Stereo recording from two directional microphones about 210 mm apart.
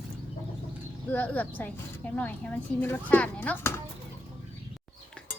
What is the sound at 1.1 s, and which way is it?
A woman's voice, 5° left (ahead or behind).